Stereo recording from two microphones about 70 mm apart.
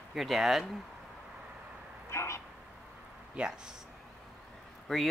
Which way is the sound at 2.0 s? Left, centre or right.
Left.